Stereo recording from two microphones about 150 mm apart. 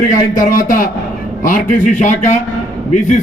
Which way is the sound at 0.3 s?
65° left (ahead or behind).